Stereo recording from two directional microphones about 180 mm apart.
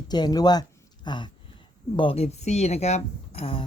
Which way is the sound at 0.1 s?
20° left (ahead or behind).